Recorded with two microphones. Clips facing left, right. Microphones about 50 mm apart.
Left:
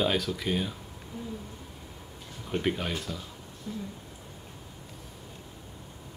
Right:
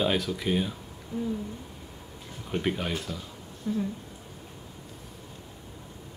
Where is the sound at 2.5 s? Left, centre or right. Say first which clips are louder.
Right 1 dB; centre.